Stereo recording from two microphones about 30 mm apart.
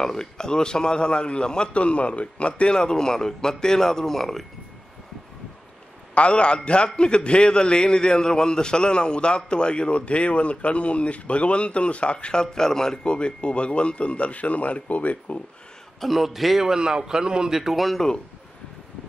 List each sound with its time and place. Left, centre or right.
0.0 s speech: left
1.7 s a man's voice: left
2.7 s speech: left
6.1 s a man's voice: left; by 13.0 s centre
13.0 s speech: left
16.0 s a man's voice: centre
16.6 s a man's voice: right
17.5 s a man's voice: centre
17.7 s a man's voice: centre